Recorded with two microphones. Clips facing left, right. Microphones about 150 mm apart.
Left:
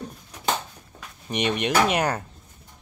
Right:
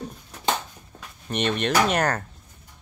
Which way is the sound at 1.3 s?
10° left (ahead or behind).